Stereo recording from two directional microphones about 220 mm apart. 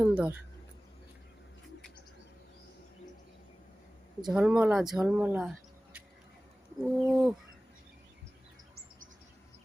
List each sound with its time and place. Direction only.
0.0 s speech: 5° right (ahead or behind)
4.3 s speech: 5° right (ahead or behind)
6.8 s speech: 5° right (ahead or behind)